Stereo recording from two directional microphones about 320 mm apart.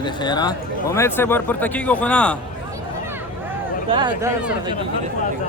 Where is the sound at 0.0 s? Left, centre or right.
Centre.